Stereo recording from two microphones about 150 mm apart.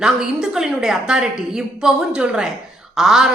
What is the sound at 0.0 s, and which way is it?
A man's voice, 5° right (ahead or behind).